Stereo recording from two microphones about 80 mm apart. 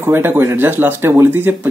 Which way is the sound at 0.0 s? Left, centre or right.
Right.